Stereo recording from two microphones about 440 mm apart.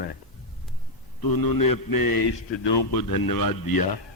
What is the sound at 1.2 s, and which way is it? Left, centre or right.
A man's voice, left.